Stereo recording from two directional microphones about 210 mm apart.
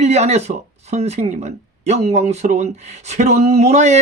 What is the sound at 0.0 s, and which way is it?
Speech, 30° right (ahead or behind).